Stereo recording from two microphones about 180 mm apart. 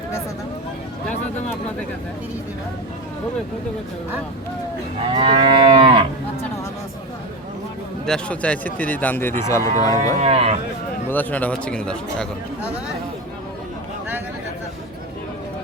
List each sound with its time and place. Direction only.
5.1 s moo: 30° right (ahead or behind)
8.0 s a man's voice: 5° left (ahead or behind)
10.2 s speech: 35° right (ahead or behind)
11.1 s a man's voice: 10° left (ahead or behind)